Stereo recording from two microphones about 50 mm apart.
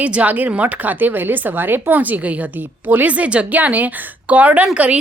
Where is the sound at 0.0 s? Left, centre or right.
Right.